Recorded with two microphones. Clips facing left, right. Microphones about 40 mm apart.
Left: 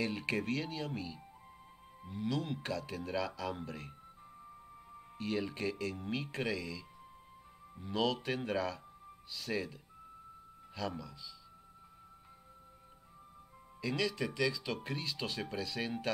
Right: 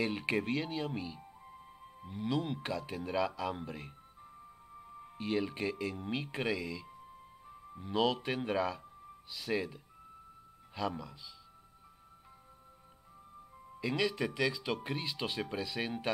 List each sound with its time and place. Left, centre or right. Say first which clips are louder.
0.0 s speech: right 2 dB; centre
5.1 s speech: right 2 dB; centre
13.7 s speech: right 2 dB; centre